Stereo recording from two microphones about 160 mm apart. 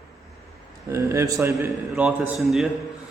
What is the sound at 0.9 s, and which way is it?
A man's voice, 15° right (ahead or behind).